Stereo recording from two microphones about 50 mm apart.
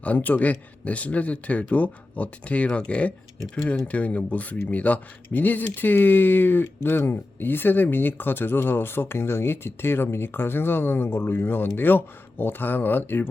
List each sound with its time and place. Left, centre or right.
0.0 s a man's voice: left